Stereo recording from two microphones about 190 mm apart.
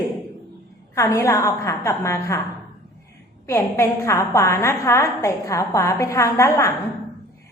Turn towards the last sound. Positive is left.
turn(degrees=15)  # may be behind; listen again after turning